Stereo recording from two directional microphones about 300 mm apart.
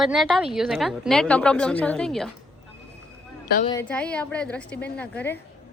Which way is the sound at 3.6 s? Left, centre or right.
Centre.